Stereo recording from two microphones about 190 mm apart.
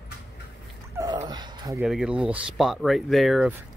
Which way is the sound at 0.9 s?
20° right (ahead or behind).